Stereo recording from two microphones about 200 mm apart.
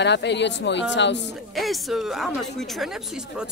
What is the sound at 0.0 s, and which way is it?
Speech, 60° left (ahead or behind).